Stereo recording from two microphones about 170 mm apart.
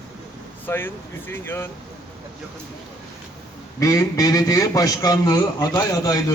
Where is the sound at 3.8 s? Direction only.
20° left (ahead or behind).